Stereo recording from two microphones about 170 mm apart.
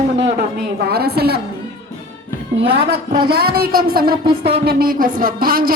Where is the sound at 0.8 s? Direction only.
70° right (ahead or behind).